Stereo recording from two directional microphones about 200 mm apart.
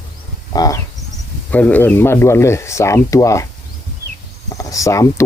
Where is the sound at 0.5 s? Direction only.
20° left (ahead or behind).